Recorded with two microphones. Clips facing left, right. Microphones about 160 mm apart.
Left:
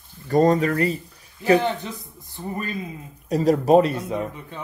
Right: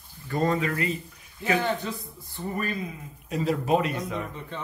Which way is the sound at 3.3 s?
40° left (ahead or behind).